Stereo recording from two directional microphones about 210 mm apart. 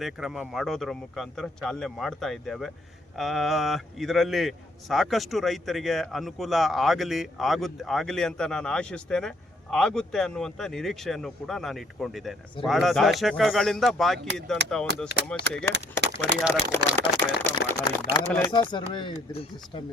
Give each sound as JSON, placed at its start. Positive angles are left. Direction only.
{"t": 0.0, "sound": "a man's voice", "side_deg": 0}
{"t": 16.5, "sound": "speech", "side_deg": 10}
{"t": 17.0, "sound": "a sound", "side_deg": 20}
{"t": 18.1, "sound": "speech", "side_deg": 15}